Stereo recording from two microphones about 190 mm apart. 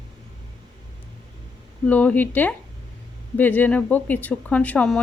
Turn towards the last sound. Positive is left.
turn(degrees=5)  # may be behind; listen again after turning